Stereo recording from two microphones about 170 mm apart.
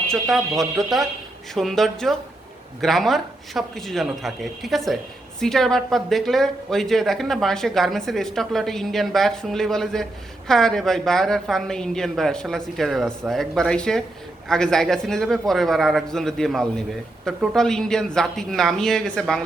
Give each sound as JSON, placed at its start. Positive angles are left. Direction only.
{"t": 0.1, "sound": "speech", "side_deg": 0}